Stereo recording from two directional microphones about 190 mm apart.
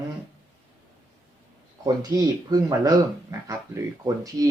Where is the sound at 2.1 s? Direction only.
20° right (ahead or behind).